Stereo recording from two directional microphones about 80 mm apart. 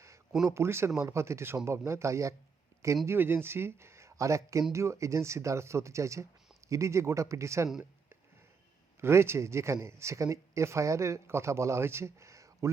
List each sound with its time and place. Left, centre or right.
0.4 s speech: right
3.1 s speech: right
9.0 s speech: right